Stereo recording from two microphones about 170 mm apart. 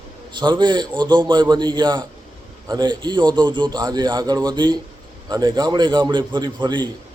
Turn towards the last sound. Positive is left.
turn(degrees=-25)  # may be behind; listen again after turning